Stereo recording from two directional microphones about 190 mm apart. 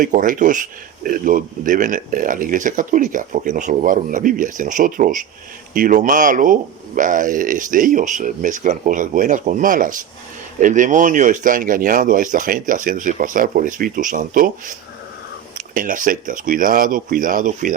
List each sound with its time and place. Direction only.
0.0 s speech: 45° right (ahead or behind)